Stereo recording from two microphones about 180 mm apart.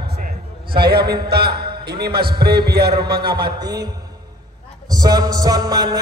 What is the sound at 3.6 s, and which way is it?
Speech, 20° right (ahead or behind).